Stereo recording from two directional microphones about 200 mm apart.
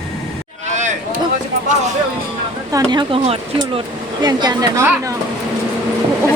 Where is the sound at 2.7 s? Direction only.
20° right (ahead or behind).